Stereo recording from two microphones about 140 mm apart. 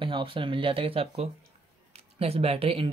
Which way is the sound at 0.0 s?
35° right (ahead or behind).